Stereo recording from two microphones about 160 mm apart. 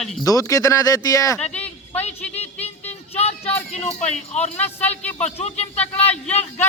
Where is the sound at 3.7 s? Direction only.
45° left (ahead or behind).